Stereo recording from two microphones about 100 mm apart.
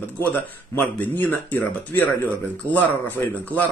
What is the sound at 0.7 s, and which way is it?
Speech, 15° left (ahead or behind).